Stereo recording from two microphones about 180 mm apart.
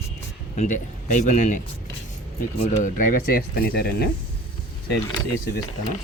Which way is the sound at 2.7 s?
45° left (ahead or behind).